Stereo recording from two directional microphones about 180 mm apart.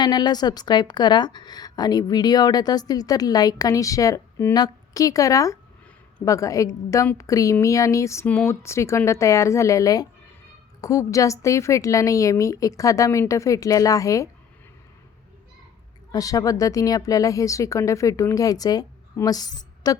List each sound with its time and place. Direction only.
0.0 s a woman's voice: 25° left (ahead or behind)
16.1 s a woman's voice: 20° left (ahead or behind)